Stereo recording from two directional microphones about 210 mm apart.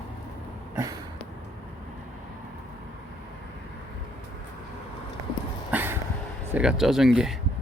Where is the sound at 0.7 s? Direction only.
15° right (ahead or behind).